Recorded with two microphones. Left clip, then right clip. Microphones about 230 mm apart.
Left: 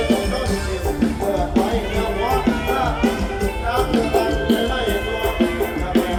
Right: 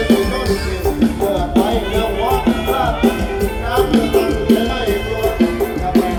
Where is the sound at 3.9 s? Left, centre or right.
Right.